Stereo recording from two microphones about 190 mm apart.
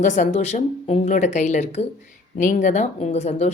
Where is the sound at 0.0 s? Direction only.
40° left (ahead or behind).